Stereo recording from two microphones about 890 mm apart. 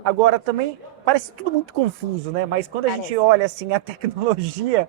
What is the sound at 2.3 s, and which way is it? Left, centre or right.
A man's voice, right.